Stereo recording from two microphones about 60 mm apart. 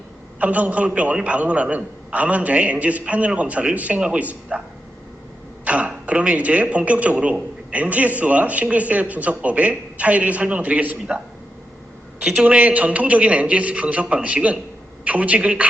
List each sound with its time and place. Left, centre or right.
0.3 s a man's voice: right
5.6 s throat clearing: right
6.1 s a man's voice: right
12.4 s a man's voice: right